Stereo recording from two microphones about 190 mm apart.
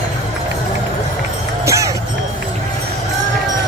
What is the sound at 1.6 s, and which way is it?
Run, 15° right (ahead or behind).